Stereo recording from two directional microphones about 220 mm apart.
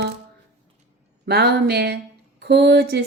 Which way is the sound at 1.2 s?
50° right (ahead or behind).